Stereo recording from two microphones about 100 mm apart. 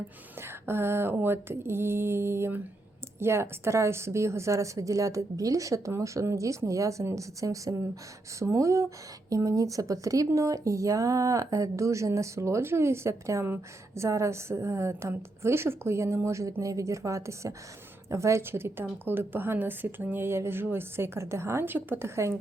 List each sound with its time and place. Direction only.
0.4 s a woman's voice: 25° right (ahead or behind)